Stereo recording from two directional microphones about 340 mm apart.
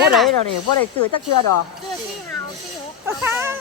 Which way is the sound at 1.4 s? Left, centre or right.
Left.